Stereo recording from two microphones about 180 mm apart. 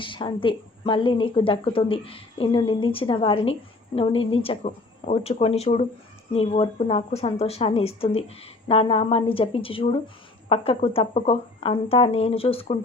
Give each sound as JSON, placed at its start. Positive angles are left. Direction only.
{"t": 0.0, "sound": "a woman's voice", "side_deg": 25}